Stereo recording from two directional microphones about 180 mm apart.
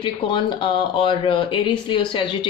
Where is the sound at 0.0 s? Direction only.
25° left (ahead or behind).